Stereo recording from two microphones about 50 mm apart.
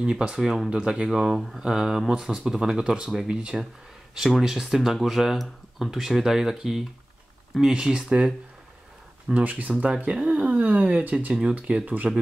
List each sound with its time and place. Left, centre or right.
0.0 s speech: centre
9.3 s speech: right
10.2 s a sound: right
11.4 s speech: centre